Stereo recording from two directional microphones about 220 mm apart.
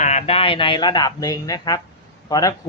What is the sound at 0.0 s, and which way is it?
A man's voice, 30° left (ahead or behind).